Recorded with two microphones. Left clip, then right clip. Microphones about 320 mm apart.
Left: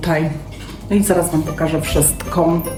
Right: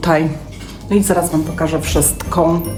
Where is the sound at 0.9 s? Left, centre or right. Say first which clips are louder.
Right 1 dB; centre.